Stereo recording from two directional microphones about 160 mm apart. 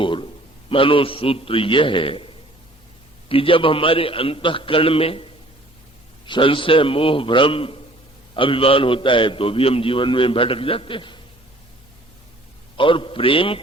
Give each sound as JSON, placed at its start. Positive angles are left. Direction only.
{"t": 0.0, "sound": "a man's voice", "side_deg": 30}
{"t": 12.7, "sound": "a man's voice", "side_deg": 30}